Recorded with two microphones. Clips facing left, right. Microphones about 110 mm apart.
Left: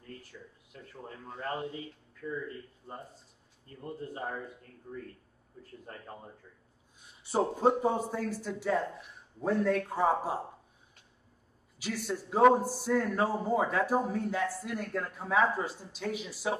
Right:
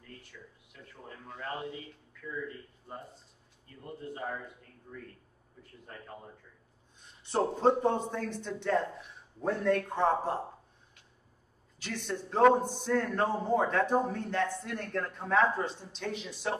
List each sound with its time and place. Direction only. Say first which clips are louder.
0.3 s a sound: left 2 dB; 35° left (ahead or behind)
1.0 s a man's voice: left 2 dB; 35° left (ahead or behind)
7.0 s a man's voice: even; 5° left (ahead or behind)
11.8 s a man's voice: left 2 dB; 5° left (ahead or behind)